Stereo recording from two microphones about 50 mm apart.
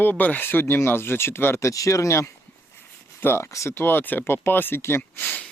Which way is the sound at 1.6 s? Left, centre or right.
Left.